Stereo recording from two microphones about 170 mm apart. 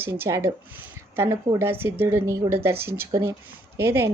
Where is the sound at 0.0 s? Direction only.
15° right (ahead or behind).